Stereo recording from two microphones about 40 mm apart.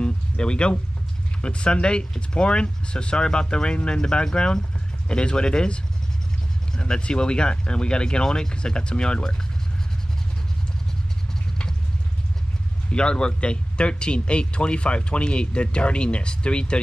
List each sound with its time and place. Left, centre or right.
0.0 s a sound: left
1.4 s speech: left
6.8 s speech: left
12.9 s speech: left